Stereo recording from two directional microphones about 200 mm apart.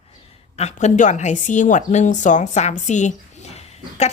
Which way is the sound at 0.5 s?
35° left (ahead or behind).